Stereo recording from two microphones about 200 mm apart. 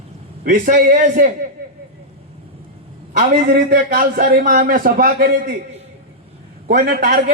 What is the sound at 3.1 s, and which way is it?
A man's voice, 40° right (ahead or behind).